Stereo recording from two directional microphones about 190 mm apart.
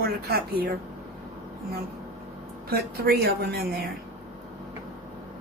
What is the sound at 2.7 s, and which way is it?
Speech, 55° right (ahead or behind).